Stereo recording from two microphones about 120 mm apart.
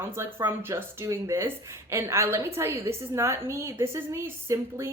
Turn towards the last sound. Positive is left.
turn(degrees=-25)  # may be behind; listen again after turning